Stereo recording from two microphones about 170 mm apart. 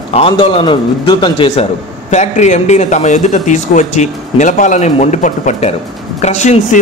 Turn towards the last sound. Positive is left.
turn(degrees=45)  # may be behind; listen again after turning